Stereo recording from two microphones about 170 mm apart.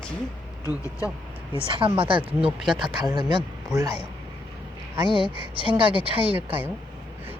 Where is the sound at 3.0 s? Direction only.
25° right (ahead or behind).